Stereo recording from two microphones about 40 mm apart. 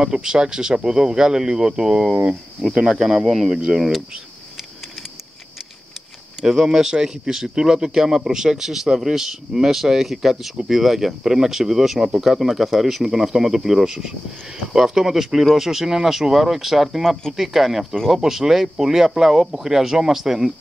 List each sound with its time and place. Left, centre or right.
0.0 s speech: centre
6.4 s speech: centre